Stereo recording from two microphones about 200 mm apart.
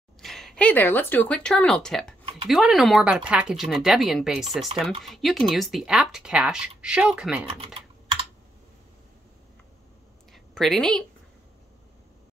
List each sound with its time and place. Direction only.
0.2 s speech: centre (ahead or behind)
7.4 s computer keyboard: 25° right (ahead or behind)
10.3 s a woman's voice: centre (ahead or behind)